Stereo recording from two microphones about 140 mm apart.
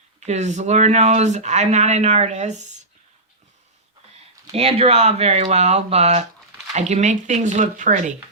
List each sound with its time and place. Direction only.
0.2 s speech: 55° right (ahead or behind)
4.5 s speech: 45° right (ahead or behind); by 8.1 s 65° right (ahead or behind)